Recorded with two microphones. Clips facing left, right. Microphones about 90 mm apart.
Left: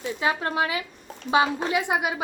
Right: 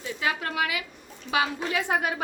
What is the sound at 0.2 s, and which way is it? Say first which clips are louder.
A woman's voice: left 3 dB; 30° left (ahead or behind).